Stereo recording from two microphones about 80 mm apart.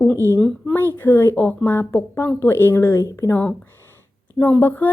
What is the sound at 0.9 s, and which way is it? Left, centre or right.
A woman's voice, left.